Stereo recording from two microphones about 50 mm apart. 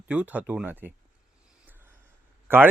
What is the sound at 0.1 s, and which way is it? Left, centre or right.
Speech, right.